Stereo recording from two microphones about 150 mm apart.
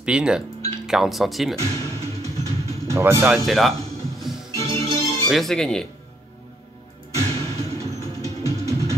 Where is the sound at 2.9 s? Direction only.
15° right (ahead or behind).